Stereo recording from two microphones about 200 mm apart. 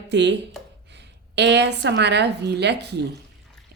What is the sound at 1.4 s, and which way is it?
Speech, 60° right (ahead or behind).